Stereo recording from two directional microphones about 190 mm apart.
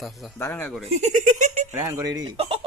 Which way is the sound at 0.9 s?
40° right (ahead or behind).